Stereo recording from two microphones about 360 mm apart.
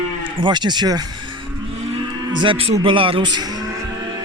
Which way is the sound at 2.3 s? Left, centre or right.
Centre.